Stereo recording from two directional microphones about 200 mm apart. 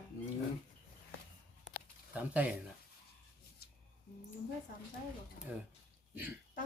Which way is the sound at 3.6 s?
50° left (ahead or behind).